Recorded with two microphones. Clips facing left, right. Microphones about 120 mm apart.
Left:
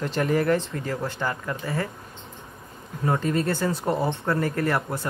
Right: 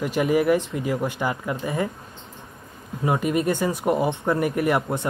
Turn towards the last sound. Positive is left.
turn(degrees=-20)  # may be behind; listen again after turning